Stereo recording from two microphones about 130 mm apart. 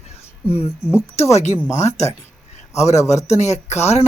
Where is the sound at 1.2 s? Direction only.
55° left (ahead or behind).